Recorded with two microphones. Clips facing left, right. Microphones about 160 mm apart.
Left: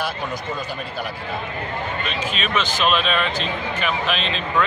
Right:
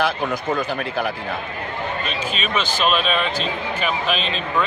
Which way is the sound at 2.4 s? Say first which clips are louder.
Even; centre (ahead or behind).